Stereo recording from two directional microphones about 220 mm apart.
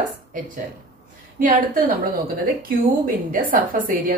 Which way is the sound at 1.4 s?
40° right (ahead or behind).